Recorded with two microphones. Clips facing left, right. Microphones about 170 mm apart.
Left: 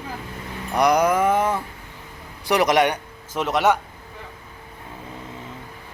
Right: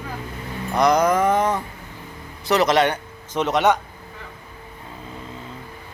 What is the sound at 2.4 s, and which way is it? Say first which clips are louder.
Speech: even; 15° left (ahead or behind).